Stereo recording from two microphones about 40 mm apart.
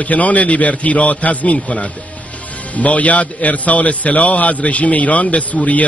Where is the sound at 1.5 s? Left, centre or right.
Left.